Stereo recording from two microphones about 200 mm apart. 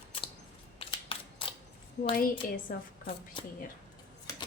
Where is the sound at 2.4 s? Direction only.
45° left (ahead or behind).